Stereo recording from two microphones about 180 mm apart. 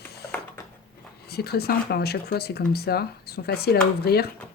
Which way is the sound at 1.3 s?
60° left (ahead or behind).